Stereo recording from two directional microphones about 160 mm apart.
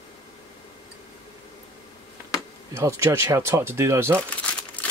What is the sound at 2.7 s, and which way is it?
Speech, 20° right (ahead or behind).